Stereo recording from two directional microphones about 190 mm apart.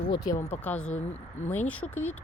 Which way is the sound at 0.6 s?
5° left (ahead or behind).